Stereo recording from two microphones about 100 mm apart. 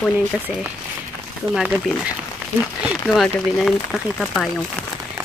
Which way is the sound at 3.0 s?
Centre (ahead or behind).